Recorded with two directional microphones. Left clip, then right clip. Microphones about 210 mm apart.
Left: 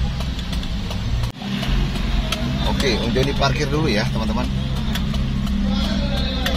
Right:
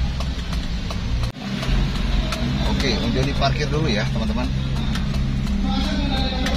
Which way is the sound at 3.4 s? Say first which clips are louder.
Left 2 dB; 30° left (ahead or behind).